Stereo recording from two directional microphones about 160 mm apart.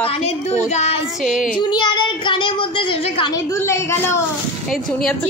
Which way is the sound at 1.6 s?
25° left (ahead or behind).